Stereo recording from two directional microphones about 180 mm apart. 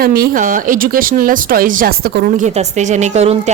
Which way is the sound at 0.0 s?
55° right (ahead or behind).